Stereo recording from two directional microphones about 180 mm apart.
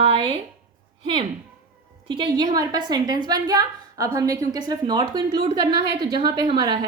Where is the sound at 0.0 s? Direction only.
30° right (ahead or behind).